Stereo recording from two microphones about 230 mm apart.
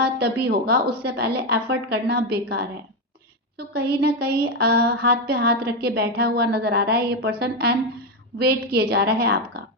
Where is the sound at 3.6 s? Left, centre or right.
Right.